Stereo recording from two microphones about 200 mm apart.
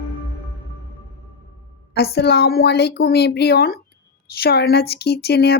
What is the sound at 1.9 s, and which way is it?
A woman's voice, 55° left (ahead or behind).